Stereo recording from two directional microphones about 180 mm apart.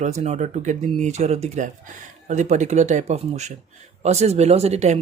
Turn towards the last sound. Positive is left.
turn(degrees=-35)  # may be behind; listen again after turning